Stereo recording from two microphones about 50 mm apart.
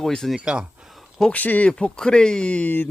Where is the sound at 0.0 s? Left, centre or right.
Centre.